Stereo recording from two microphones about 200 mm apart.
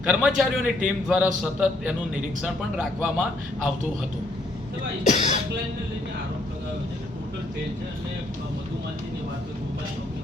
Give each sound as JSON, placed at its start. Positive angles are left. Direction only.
{"t": 0.0, "sound": "a man's voice", "side_deg": -5}
{"t": 5.0, "sound": "speech", "side_deg": 35}